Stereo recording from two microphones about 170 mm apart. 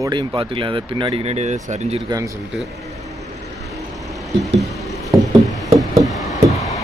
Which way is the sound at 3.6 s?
Centre (ahead or behind).